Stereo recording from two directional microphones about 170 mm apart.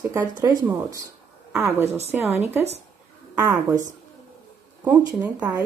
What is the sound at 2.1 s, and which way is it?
Speech, 5° right (ahead or behind).